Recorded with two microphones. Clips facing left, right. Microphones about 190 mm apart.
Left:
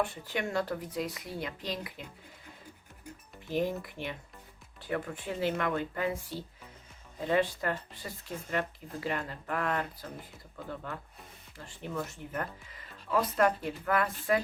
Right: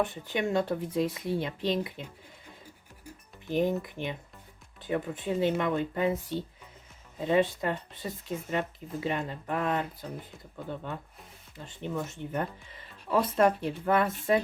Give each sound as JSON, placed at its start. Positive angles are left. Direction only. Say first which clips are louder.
{"t": 0.0, "sound": "speech", "louder": "right 3 dB", "side_deg": -20}
{"t": 3.5, "sound": "speech", "louder": "right 4 dB", "side_deg": -20}